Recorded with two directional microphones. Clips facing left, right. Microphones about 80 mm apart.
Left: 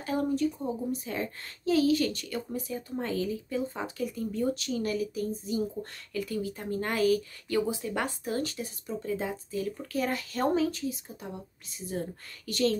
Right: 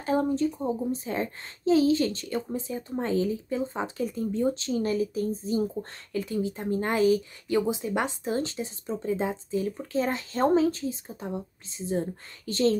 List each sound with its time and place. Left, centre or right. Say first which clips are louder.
0.0 s a child's voice: right 3 dB; right